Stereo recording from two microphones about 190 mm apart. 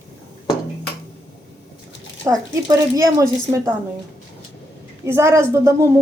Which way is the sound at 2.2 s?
20° right (ahead or behind).